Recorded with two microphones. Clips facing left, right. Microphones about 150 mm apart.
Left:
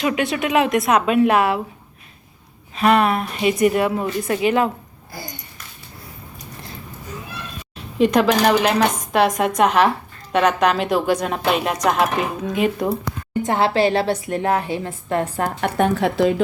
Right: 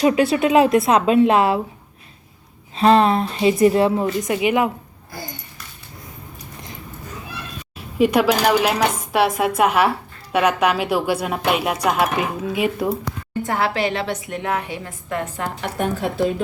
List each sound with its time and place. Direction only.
0.0 s a woman's voice: 30° right (ahead or behind)
2.7 s a woman's voice: 30° right (ahead or behind)
4.2 s speech: 15° right (ahead or behind)
7.9 s speech: 10° right (ahead or behind)
13.4 s a woman's voice: 25° left (ahead or behind)
15.4 s a woman's voice: 65° left (ahead or behind)